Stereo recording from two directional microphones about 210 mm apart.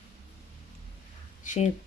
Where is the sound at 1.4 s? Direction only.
35° left (ahead or behind).